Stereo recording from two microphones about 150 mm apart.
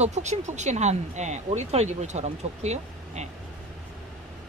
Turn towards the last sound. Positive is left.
turn(degrees=-45)  # may be behind; listen again after turning